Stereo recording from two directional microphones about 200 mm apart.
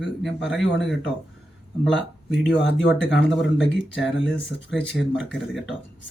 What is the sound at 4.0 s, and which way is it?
Speech, centre (ahead or behind).